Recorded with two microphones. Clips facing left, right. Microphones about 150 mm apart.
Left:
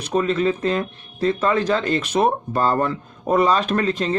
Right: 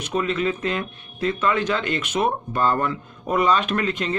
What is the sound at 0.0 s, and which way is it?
Speech, 35° left (ahead or behind).